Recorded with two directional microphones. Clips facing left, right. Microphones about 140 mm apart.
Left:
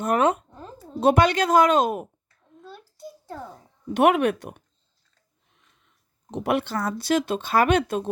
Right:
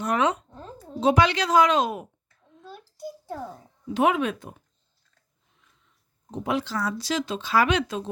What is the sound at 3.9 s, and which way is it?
Speech, 65° left (ahead or behind).